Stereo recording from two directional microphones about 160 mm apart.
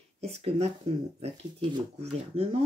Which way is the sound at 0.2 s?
40° right (ahead or behind).